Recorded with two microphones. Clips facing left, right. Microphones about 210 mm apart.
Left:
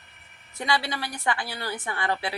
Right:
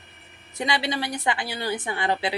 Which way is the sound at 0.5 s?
20° right (ahead or behind).